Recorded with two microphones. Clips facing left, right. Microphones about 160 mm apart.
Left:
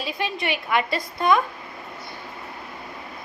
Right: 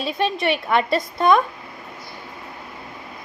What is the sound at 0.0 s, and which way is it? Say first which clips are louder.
Speech: right 6 dB; 25° right (ahead or behind).